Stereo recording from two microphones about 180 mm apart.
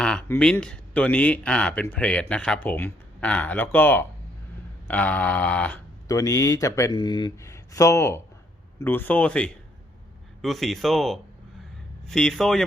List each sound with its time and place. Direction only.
0.0 s speech: 5° left (ahead or behind)
6.1 s speech: 15° left (ahead or behind)